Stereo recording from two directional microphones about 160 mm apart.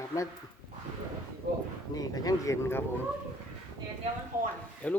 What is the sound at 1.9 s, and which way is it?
Speech, 25° left (ahead or behind).